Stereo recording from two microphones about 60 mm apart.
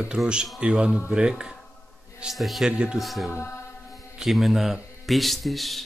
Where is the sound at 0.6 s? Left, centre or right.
Centre.